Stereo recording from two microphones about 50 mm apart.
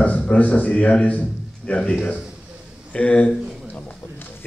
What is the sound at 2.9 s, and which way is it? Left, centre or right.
Speech, left.